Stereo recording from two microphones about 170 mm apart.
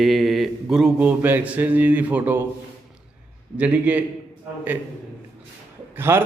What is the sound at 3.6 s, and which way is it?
Mantra, 10° right (ahead or behind).